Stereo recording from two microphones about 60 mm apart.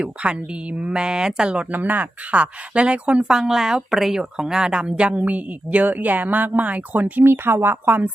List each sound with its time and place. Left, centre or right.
0.0 s speech: centre
1.7 s speech: right
7.3 s speech: right